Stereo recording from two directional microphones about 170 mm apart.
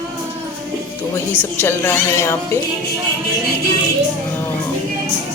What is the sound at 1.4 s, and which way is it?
Speech, 15° left (ahead or behind).